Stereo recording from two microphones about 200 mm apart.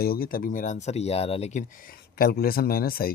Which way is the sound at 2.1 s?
50° left (ahead or behind).